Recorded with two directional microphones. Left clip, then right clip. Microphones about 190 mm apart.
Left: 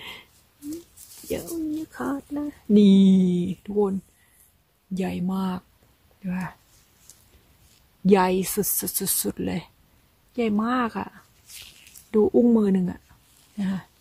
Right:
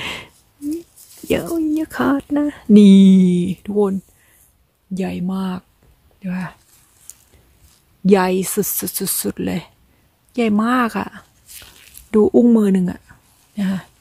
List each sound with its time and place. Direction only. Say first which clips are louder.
0.0 s a sound: right 12 dB; 35° right (ahead or behind)
1.3 s speech: right 10 dB; 35° right (ahead or behind)
4.9 s speech: right 4 dB; 20° right (ahead or behind)
8.0 s speech: right 5 dB; 20° right (ahead or behind)